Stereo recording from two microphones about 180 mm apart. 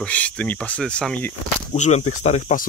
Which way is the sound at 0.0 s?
5° left (ahead or behind).